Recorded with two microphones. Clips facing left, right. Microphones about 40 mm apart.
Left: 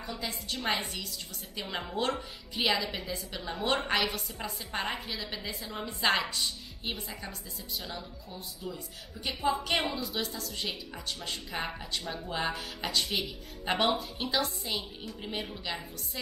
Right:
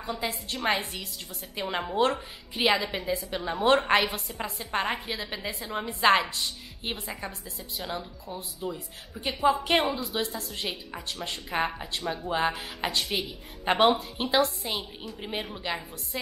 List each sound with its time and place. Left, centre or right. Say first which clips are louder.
0.0 s a woman's voice: right 5 dB; right
6.2 s speech: right 1 dB; centre
6.8 s a woman's voice: right 4 dB; right
9.8 s speech: right 5 dB; centre
10.2 s a woman's voice: right 4 dB; right
11.1 s speech: right 3 dB; centre
12.0 s speech: right 6 dB; centre
12.3 s a woman's voice: right 6 dB; right
13.0 s speech: right 2 dB; centre
13.7 s a woman's voice: right 6 dB; right